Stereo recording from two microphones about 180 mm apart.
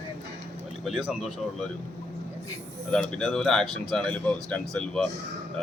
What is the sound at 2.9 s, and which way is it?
A man's voice, 5° left (ahead or behind).